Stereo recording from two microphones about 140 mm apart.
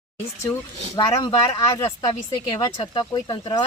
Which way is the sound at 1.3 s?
25° left (ahead or behind).